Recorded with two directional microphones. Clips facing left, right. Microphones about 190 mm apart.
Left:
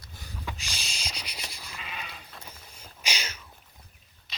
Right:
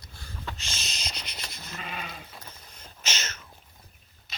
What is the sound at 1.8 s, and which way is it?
Sheep, 45° right (ahead or behind).